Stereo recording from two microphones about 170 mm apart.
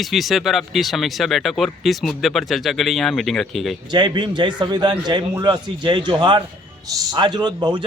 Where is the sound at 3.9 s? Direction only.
25° right (ahead or behind).